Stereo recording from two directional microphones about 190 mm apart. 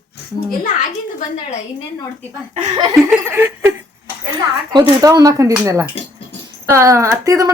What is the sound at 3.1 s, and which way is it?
Speech, 10° right (ahead or behind).